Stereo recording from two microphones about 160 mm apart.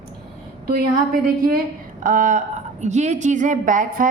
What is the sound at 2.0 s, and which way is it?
A woman's voice, 55° right (ahead or behind).